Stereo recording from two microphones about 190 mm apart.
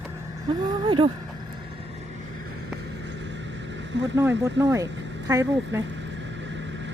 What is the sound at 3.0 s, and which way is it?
Vehicle, 65° right (ahead or behind).